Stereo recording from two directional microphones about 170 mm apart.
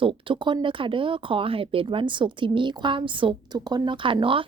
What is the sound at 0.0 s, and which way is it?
Speech, 30° right (ahead or behind).